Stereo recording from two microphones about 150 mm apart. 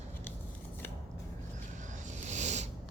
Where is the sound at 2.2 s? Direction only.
50° right (ahead or behind).